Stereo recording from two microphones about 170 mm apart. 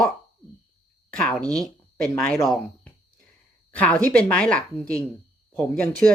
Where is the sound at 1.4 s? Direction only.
20° right (ahead or behind).